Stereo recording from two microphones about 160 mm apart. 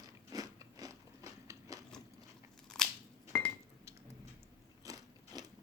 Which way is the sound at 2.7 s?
5° left (ahead or behind).